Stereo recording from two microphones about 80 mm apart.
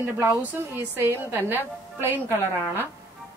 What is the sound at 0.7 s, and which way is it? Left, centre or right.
Speech, right.